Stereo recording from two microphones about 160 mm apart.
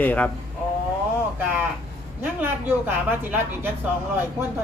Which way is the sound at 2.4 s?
10° right (ahead or behind).